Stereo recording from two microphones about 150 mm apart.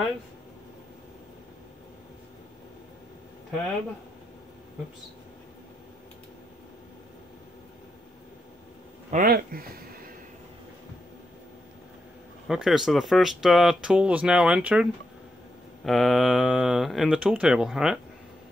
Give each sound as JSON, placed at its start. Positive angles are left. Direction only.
{"t": 9.1, "sound": "speech", "side_deg": -80}
{"t": 12.4, "sound": "speech", "side_deg": -5}